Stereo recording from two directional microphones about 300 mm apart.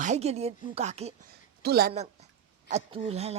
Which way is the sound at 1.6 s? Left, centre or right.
Right.